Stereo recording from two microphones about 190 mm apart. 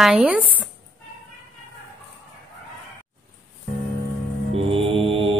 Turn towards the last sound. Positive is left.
turn(degrees=-30)  # may be behind; listen again after turning